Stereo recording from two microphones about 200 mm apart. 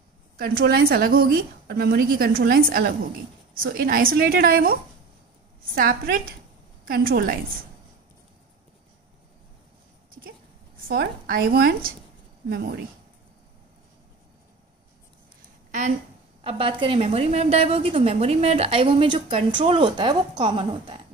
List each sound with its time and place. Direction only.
0.4 s a woman's voice: 50° right (ahead or behind)
5.8 s a woman's voice: 45° right (ahead or behind)
10.9 s a woman's voice: 50° right (ahead or behind)
16.4 s a woman's voice: 25° right (ahead or behind)